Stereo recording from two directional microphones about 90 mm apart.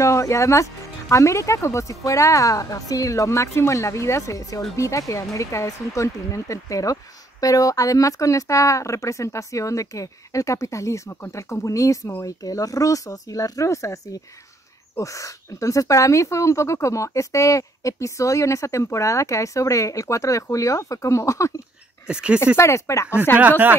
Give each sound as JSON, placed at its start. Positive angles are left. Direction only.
{"t": 0.0, "sound": "speech", "side_deg": 35}
{"t": 15.0, "sound": "speech", "side_deg": 35}
{"t": 22.0, "sound": "speech", "side_deg": -10}
{"t": 22.6, "sound": "speech", "side_deg": 35}